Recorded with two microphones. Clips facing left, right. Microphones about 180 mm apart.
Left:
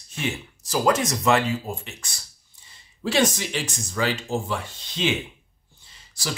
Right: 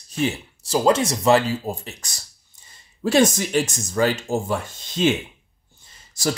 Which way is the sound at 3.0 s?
45° right (ahead or behind).